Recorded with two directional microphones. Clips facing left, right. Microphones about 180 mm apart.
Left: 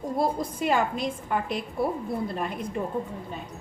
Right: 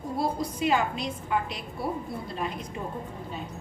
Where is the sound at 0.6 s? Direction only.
50° left (ahead or behind).